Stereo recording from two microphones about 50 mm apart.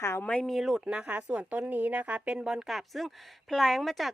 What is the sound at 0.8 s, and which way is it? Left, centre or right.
A woman's voice, centre.